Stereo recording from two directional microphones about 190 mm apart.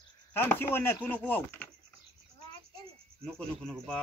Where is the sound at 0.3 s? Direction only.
10° left (ahead or behind).